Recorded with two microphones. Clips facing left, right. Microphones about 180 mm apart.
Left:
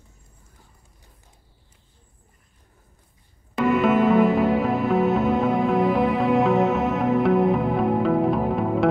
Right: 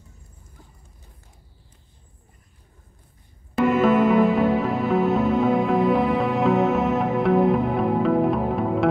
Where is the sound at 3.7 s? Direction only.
Centre (ahead or behind).